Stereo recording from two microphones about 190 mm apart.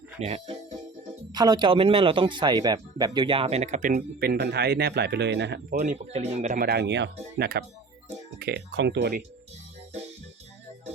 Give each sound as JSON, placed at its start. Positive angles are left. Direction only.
{"t": 0.2, "sound": "speech", "side_deg": -30}
{"t": 1.3, "sound": "speech", "side_deg": -20}
{"t": 5.7, "sound": "speech", "side_deg": -40}